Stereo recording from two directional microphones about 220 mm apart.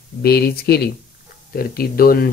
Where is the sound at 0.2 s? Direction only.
45° left (ahead or behind).